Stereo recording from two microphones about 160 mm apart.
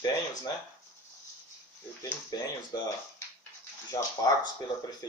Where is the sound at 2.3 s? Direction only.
25° left (ahead or behind).